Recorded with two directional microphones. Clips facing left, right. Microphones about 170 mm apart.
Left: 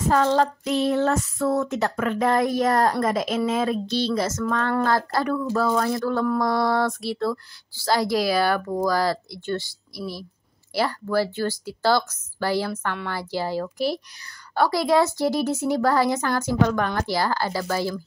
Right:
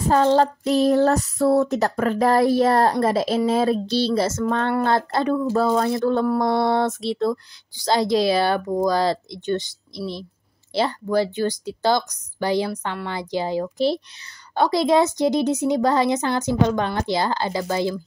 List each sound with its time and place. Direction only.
0.1 s child singing: 30° right (ahead or behind)
4.8 s speech: 25° right (ahead or behind)